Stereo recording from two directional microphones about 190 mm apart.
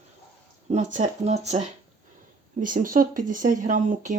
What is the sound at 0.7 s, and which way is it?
Speech, 40° right (ahead or behind).